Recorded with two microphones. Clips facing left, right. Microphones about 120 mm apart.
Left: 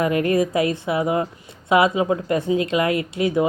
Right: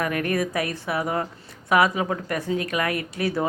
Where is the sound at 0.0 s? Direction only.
25° left (ahead or behind).